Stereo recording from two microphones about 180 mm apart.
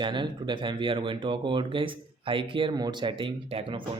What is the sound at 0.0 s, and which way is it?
Speech, 25° right (ahead or behind).